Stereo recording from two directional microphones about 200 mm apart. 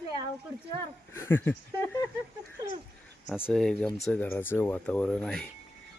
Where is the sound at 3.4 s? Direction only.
5° left (ahead or behind).